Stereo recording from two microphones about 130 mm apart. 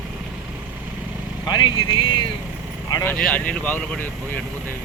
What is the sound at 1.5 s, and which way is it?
Speech, 35° left (ahead or behind).